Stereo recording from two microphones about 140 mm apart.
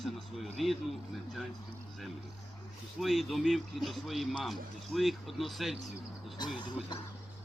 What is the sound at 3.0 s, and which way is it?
A man's voice, centre (ahead or behind).